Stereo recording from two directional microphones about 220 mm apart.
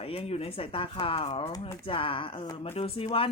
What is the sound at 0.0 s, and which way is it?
Speech, 25° left (ahead or behind).